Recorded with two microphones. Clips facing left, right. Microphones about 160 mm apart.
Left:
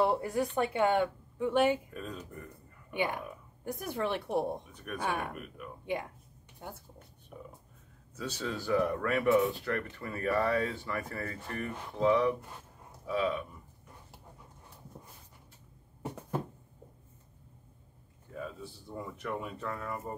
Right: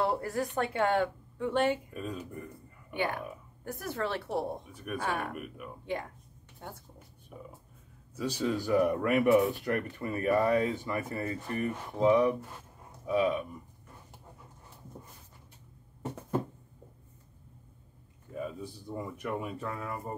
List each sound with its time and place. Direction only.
0.0 s a woman's voice: 10° left (ahead or behind)
2.0 s speech: 5° right (ahead or behind)
2.9 s a woman's voice: 15° left (ahead or behind)
4.7 s speech: 10° right (ahead or behind)
6.6 s a woman's voice: 10° left (ahead or behind)
8.2 s speech: 10° right (ahead or behind)
13.0 s livestock: 15° right (ahead or behind)
18.3 s speech: 10° right (ahead or behind)